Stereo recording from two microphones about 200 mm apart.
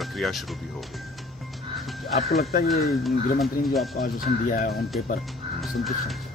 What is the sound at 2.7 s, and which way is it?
Speech, centre (ahead or behind).